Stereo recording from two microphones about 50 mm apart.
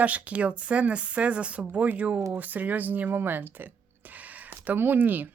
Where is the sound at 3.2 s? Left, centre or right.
Right.